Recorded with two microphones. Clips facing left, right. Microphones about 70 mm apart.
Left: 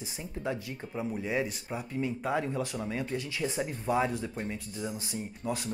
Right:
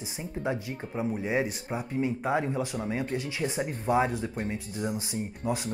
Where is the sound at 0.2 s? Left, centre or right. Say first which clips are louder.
Right 3 dB; centre.